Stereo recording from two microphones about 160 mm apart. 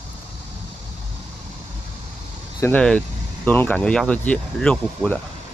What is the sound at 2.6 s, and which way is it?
Speech, 10° left (ahead or behind).